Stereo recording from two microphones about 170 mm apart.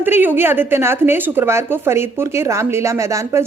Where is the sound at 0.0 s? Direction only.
10° right (ahead or behind).